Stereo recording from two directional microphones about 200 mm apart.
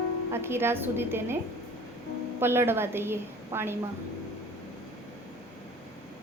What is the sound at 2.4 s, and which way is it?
A woman's voice, 10° right (ahead or behind).